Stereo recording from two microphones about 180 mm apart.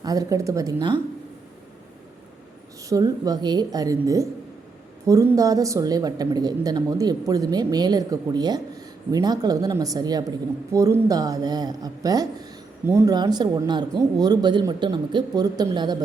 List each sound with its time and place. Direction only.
0.0 s a woman's voice: 20° right (ahead or behind)
2.9 s a woman's voice: 20° right (ahead or behind)